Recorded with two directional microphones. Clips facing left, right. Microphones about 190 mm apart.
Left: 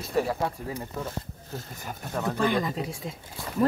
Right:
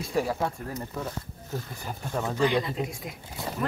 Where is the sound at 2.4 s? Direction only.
50° left (ahead or behind).